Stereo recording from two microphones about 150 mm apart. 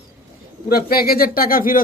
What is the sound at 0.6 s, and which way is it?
Speech, 85° left.